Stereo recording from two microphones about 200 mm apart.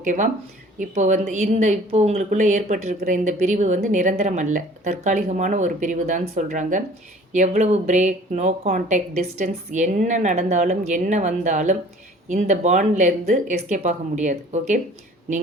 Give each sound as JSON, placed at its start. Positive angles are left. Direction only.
{"t": 0.0, "sound": "a woman's voice", "side_deg": -40}